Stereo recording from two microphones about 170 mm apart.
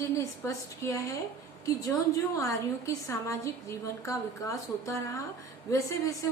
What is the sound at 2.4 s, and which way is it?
A woman's voice, 20° left (ahead or behind).